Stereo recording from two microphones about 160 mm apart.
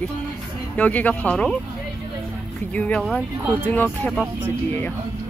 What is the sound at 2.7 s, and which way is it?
Speech, 10° left (ahead or behind).